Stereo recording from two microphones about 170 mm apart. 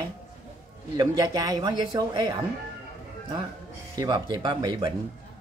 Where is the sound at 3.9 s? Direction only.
25° right (ahead or behind).